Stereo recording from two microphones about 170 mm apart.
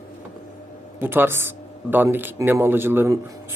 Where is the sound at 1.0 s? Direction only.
10° right (ahead or behind).